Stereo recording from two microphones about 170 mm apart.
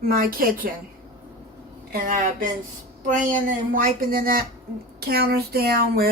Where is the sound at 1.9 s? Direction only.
55° right (ahead or behind).